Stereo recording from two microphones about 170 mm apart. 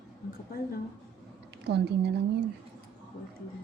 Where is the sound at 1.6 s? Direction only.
80° right.